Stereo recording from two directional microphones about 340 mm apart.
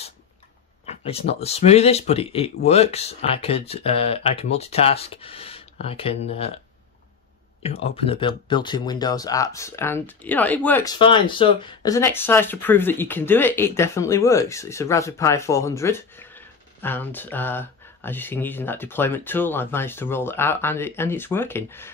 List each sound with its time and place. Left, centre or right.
0.8 s speech: centre
7.6 s speech: centre